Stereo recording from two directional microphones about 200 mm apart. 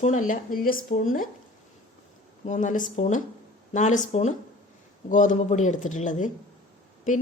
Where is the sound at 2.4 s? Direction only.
40° left (ahead or behind).